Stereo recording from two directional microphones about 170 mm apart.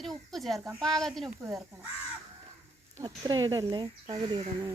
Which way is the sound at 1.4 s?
20° right (ahead or behind).